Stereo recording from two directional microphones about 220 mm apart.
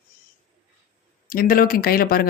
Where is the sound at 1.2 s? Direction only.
40° left (ahead or behind).